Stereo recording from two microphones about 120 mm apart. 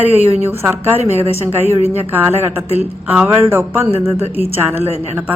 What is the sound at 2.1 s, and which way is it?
A woman's voice, 15° right (ahead or behind).